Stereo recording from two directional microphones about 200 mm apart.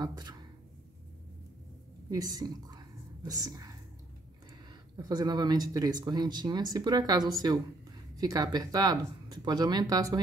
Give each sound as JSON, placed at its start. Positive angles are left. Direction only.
{"t": 0.0, "sound": "speech", "side_deg": -20}
{"t": 2.0, "sound": "a woman's voice", "side_deg": -20}
{"t": 4.9, "sound": "speech", "side_deg": -20}